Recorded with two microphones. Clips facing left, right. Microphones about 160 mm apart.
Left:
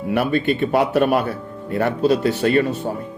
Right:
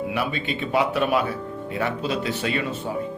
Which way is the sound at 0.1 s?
50° left (ahead or behind).